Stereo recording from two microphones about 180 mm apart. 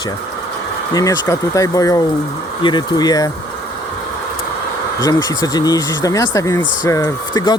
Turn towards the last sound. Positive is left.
turn(degrees=25)  # may be behind; listen again after turning